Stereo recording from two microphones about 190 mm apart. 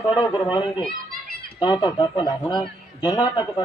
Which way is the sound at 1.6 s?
20° left (ahead or behind).